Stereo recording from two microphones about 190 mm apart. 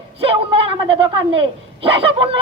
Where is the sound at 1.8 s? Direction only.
30° right (ahead or behind).